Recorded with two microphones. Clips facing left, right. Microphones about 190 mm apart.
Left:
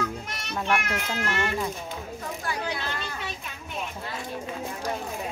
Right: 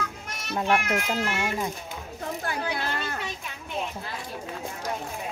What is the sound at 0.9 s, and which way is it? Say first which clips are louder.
Speech: right 2 dB; 5° right (ahead or behind).